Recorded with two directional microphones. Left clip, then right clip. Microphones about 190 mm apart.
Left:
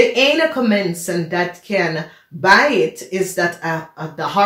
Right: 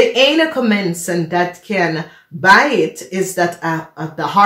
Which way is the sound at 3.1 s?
45° right (ahead or behind).